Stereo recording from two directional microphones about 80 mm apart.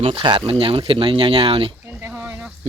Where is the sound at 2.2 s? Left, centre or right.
Right.